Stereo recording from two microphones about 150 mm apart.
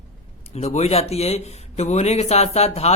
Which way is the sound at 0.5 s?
45° left (ahead or behind).